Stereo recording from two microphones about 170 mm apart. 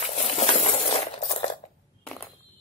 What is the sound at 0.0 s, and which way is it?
Coin, 40° left (ahead or behind).